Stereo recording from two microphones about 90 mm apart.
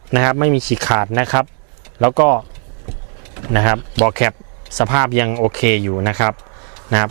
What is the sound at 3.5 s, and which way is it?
Speech, 20° right (ahead or behind).